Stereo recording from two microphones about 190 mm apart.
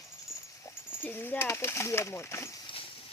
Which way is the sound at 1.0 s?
10° left (ahead or behind).